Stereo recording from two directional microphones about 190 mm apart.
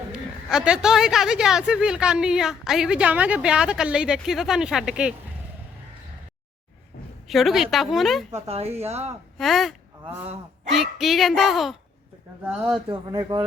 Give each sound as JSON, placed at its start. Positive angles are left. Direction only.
{"t": 0.1, "sound": "a man's voice", "side_deg": -5}
{"t": 7.3, "sound": "a man's voice", "side_deg": 0}
{"t": 8.3, "sound": "speech", "side_deg": -35}
{"t": 9.4, "sound": "a man's voice", "side_deg": 0}
{"t": 12.9, "sound": "speech", "side_deg": -25}